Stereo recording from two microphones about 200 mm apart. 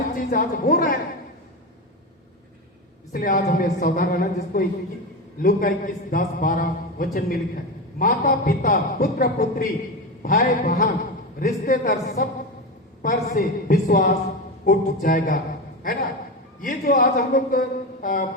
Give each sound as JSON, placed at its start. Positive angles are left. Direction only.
{"t": 0.2, "sound": "a man's voice", "side_deg": 40}
{"t": 3.1, "sound": "a woman's voice", "side_deg": 45}
{"t": 16.6, "sound": "a man's voice", "side_deg": 40}